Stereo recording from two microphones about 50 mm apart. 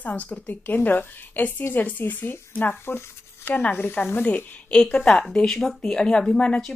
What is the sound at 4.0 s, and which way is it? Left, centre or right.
Speech, left.